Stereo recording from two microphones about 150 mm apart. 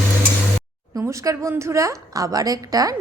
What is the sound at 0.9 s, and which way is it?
A woman's voice, 20° right (ahead or behind).